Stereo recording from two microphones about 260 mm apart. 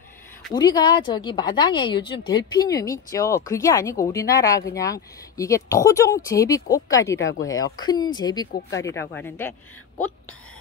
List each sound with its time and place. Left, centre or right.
0.5 s a woman's voice: centre
7.2 s speech: left
7.5 s a woman's voice: centre